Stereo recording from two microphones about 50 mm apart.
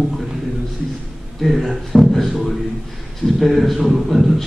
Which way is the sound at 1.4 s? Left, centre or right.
Centre.